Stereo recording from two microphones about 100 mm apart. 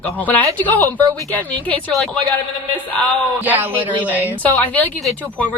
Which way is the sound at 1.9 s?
5° left (ahead or behind).